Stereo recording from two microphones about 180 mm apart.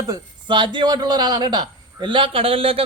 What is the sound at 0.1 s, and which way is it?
A man's voice, 25° right (ahead or behind).